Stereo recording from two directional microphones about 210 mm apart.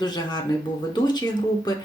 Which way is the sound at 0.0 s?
20° left (ahead or behind).